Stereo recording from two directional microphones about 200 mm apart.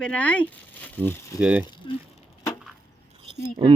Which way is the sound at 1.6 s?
25° left (ahead or behind).